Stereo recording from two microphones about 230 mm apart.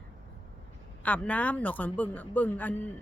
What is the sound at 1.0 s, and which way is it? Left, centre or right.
Speech, centre.